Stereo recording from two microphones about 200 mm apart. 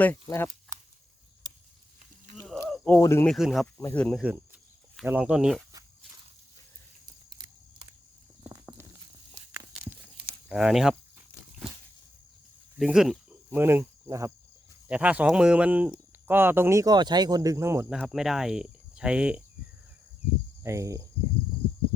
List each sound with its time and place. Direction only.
0.0 s speech: 10° left (ahead or behind)
2.3 s a sound: centre (ahead or behind)
3.3 s speech: centre (ahead or behind)
3.8 s speech: 10° left (ahead or behind)
5.0 s speech: 5° right (ahead or behind)
7.0 s a sound: 20° right (ahead or behind)
9.5 s walk: 10° right (ahead or behind)
10.5 s speech: centre (ahead or behind)
12.7 s speech: 5° right (ahead or behind)
20.7 s speech: 15° right (ahead or behind)